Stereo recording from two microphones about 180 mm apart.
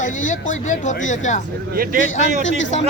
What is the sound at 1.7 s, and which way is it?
Speech, 55° right (ahead or behind).